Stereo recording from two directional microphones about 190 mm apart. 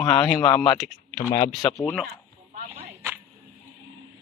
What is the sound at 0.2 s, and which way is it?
Speech, 5° left (ahead or behind).